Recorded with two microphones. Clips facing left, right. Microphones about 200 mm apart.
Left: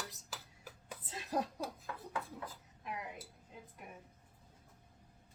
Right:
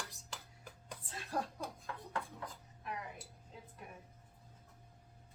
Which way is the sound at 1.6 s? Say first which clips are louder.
Left 2 dB; 5° left (ahead or behind).